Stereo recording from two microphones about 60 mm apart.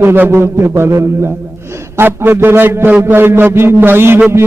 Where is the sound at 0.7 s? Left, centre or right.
Right.